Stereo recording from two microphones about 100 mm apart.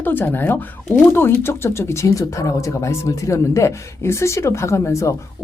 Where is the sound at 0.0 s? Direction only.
20° left (ahead or behind).